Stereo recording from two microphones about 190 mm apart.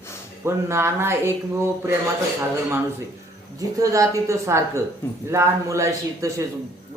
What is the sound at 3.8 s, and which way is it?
Speech, 15° right (ahead or behind).